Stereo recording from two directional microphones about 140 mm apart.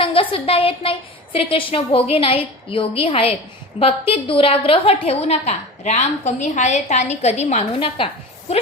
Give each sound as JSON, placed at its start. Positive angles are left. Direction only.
{"t": 0.0, "sound": "a woman's voice", "side_deg": 40}